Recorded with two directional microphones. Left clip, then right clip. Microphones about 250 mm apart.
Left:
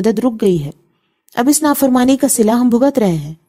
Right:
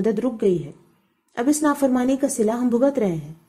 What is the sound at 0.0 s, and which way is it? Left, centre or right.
A woman's voice, left.